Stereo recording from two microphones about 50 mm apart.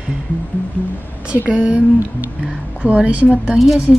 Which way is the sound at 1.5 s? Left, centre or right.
Right.